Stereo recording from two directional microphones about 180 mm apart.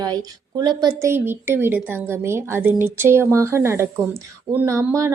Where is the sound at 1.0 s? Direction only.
10° right (ahead or behind).